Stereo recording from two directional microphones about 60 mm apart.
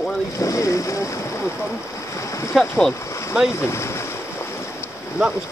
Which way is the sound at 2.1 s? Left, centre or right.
Left.